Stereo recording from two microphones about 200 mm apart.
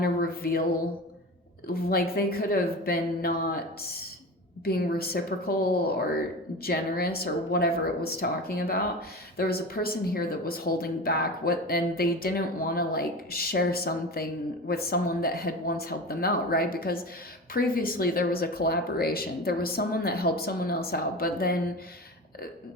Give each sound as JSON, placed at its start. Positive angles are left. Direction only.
{"t": 0.0, "sound": "a sound", "side_deg": 50}
{"t": 1.6, "sound": "speech", "side_deg": 50}
{"t": 4.6, "sound": "speech", "side_deg": 50}